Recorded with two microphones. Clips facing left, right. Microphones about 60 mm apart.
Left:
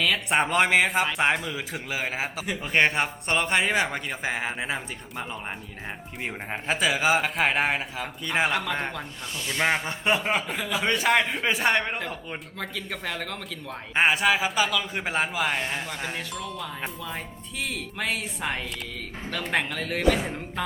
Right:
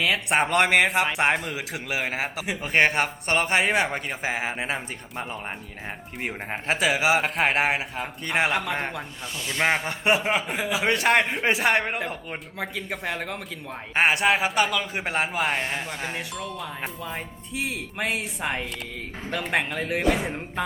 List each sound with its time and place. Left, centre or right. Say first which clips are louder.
0.0 s a man's voice: right 1 dB; centre
3.5 s a man's voice: right 1 dB; centre
13.9 s a man's voice: right 1 dB; centre
17.6 s a man's voice: right 2 dB; centre